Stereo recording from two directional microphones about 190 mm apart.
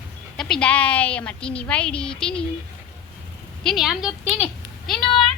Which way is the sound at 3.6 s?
Centre (ahead or behind).